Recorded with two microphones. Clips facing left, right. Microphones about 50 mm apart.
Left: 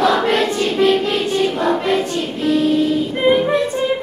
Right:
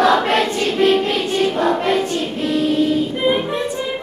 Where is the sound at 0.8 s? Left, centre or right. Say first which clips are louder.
Even; right.